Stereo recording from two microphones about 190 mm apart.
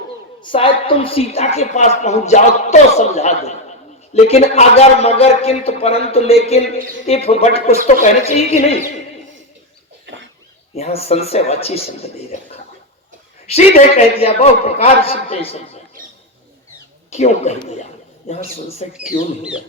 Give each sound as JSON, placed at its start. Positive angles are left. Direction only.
{"t": 0.4, "sound": "a woman's voice", "side_deg": 30}
{"t": 10.8, "sound": "a woman's voice", "side_deg": 35}
{"t": 13.5, "sound": "a woman's voice", "side_deg": 35}
{"t": 17.1, "sound": "a woman's voice", "side_deg": 35}